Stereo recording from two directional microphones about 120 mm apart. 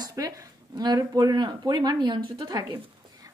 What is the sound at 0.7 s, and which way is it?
A woman's voice, 30° right (ahead or behind).